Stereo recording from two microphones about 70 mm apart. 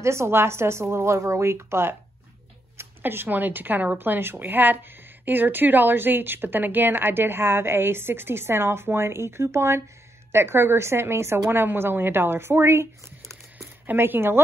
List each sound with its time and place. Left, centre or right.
0.0 s speech: right
13.8 s speech: right